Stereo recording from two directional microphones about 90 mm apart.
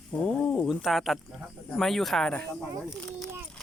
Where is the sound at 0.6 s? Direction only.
5° right (ahead or behind).